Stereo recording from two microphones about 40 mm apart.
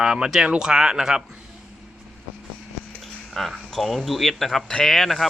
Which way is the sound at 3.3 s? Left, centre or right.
Centre.